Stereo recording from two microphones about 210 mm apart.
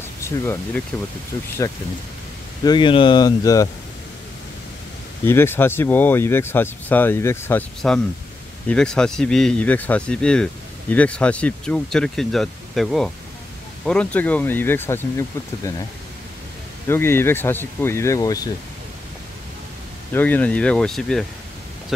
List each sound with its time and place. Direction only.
0.2 s speech: 10° left (ahead or behind)
5.2 s speech: 10° left (ahead or behind)
16.8 s speech: 10° left (ahead or behind)
20.1 s speech: 10° left (ahead or behind)